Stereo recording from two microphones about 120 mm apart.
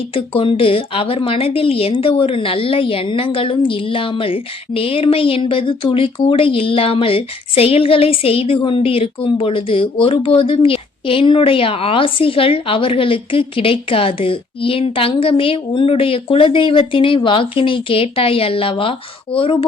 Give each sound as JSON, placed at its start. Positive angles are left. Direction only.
{"t": 0.1, "sound": "a woman's voice", "side_deg": 50}